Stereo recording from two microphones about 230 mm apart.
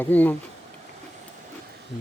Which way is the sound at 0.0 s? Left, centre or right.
Centre.